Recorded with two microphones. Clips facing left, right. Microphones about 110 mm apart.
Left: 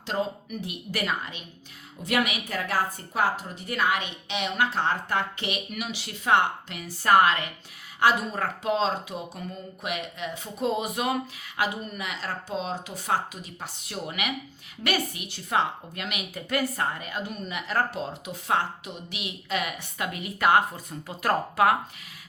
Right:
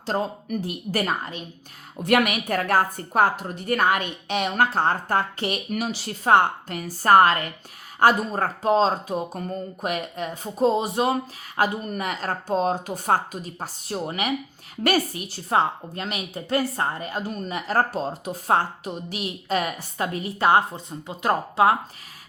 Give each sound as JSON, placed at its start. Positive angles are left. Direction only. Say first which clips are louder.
{"t": 0.0, "sound": "a woman's voice", "louder": "right 3 dB", "side_deg": -40}
{"t": 2.0, "sound": "a woman's voice", "louder": "right 6 dB", "side_deg": -55}
{"t": 11.6, "sound": "a woman's voice", "louder": "right 5 dB", "side_deg": -45}